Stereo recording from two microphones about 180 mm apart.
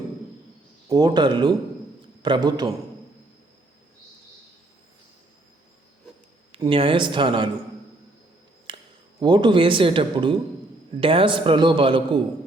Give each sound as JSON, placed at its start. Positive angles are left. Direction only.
{"t": 0.9, "sound": "a man's voice", "side_deg": -20}
{"t": 6.5, "sound": "a man's voice", "side_deg": -30}
{"t": 8.7, "sound": "a sound", "side_deg": -30}
{"t": 9.2, "sound": "a man's voice", "side_deg": -25}